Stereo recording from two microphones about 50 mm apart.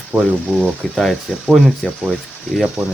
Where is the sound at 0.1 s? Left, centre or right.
Right.